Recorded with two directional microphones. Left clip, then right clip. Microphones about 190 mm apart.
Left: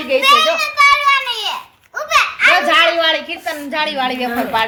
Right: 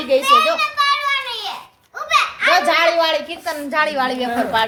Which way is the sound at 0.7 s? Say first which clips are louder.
Left 6 dB; 35° left (ahead or behind).